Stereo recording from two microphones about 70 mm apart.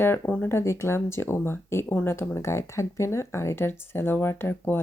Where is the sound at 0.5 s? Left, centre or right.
Left.